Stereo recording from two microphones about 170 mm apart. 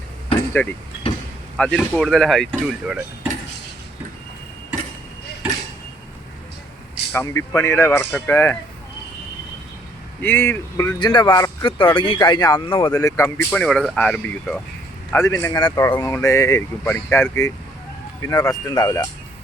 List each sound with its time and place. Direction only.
0.6 s speech: 10° left (ahead or behind)
7.1 s speech: 15° left (ahead or behind)
10.2 s speech: 10° left (ahead or behind); by 13.0 s 30° left (ahead or behind)
13.0 s speech: 15° left (ahead or behind)